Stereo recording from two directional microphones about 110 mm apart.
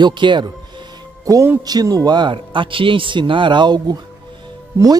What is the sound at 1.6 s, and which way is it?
A man's voice, 35° right (ahead or behind).